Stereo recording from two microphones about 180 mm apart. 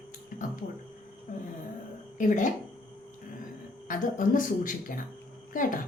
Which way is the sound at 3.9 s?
45° left (ahead or behind).